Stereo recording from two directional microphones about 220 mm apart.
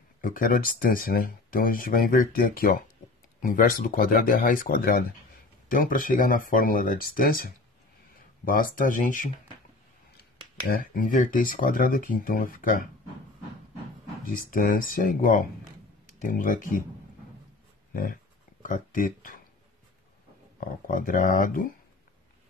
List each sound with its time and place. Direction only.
0.2 s speech: 40° left (ahead or behind)
10.7 s speech: 40° left (ahead or behind)
14.3 s speech: 40° left (ahead or behind)
17.9 s a sound: 40° left (ahead or behind)
20.6 s speech: 40° left (ahead or behind)